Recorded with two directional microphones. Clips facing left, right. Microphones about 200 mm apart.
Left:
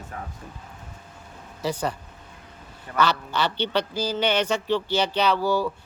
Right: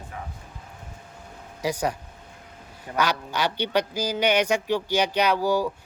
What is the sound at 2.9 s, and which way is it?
Speech, 10° right (ahead or behind).